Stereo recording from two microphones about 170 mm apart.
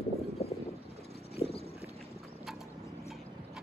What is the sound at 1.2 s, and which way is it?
Clip-clop, 35° left (ahead or behind).